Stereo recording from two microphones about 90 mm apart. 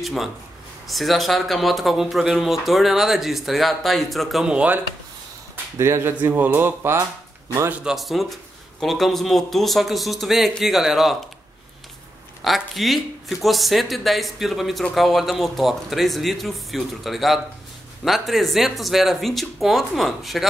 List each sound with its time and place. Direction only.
0.0 s speech: centre (ahead or behind)
5.8 s speech: 30° right (ahead or behind)
7.9 s speech: centre (ahead or behind)
12.4 s speech: centre (ahead or behind)